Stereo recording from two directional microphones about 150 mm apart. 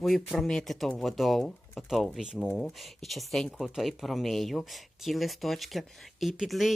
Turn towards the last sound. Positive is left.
turn(degrees=0)  # may be behind; listen again after turning